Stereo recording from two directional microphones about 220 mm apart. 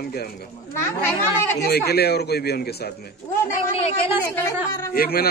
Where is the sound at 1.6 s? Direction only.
45° left (ahead or behind).